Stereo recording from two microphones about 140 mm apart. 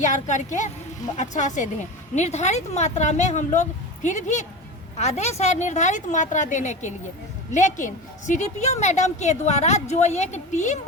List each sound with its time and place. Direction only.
0.0 s a woman's voice: 60° left (ahead or behind)